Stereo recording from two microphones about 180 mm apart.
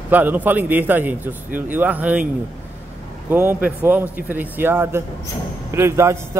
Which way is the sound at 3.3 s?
10° right (ahead or behind).